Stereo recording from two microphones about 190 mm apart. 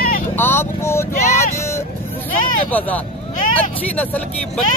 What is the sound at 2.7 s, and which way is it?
Speech, 10° left (ahead or behind).